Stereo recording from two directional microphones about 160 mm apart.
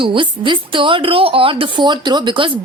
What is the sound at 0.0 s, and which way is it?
A woman's voice, 30° right (ahead or behind).